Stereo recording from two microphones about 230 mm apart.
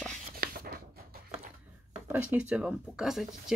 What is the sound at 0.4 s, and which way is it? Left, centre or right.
Writing, right.